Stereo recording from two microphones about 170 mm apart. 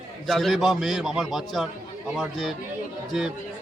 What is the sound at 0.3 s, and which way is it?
A man's voice, centre (ahead or behind).